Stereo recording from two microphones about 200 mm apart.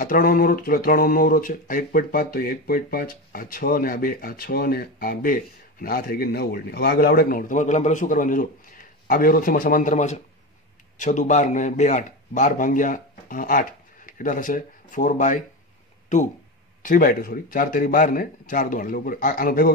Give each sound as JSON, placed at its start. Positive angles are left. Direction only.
{"t": 0.0, "sound": "speech", "side_deg": 45}
{"t": 16.8, "sound": "speech", "side_deg": 45}